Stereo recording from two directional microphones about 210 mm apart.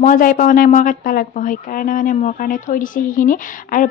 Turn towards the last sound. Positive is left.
turn(degrees=40)  # may be behind; listen again after turning